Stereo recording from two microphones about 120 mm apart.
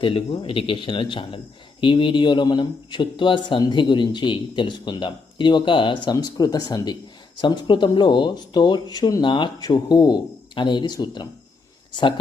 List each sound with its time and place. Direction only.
0.0 s speech: 50° left (ahead or behind)